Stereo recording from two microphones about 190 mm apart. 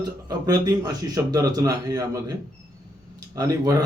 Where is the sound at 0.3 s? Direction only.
20° right (ahead or behind).